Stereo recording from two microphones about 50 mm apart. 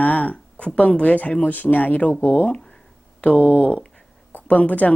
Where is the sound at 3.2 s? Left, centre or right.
Left.